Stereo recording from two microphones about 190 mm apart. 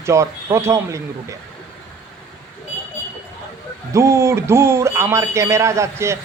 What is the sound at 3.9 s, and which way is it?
Speech, 15° right (ahead or behind).